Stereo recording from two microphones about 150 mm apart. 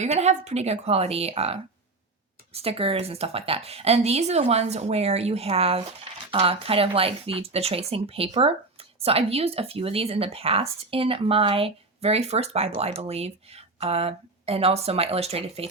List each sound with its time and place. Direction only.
0.0 s a woman's voice: 45° right (ahead or behind)